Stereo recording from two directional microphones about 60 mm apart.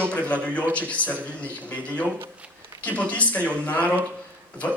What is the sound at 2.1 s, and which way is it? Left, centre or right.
Speech, right.